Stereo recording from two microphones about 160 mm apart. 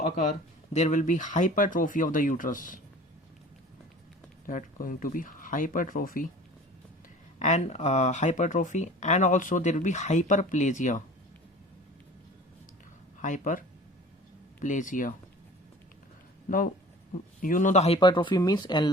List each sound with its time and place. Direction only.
0.7 s speech: 45° left (ahead or behind)
4.4 s speech: 60° left (ahead or behind)
7.3 s speech: 45° left (ahead or behind)
13.2 s speech: 55° left (ahead or behind)
17.4 s speech: 55° left (ahead or behind); by 18.9 s 25° left (ahead or behind)